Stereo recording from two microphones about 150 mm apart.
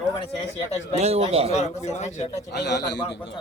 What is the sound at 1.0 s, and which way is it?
Speech, 45° right (ahead or behind).